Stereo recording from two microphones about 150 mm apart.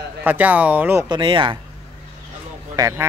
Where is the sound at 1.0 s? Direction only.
30° right (ahead or behind).